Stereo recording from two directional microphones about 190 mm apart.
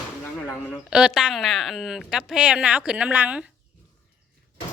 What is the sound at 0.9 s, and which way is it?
A woman's voice, 5° right (ahead or behind).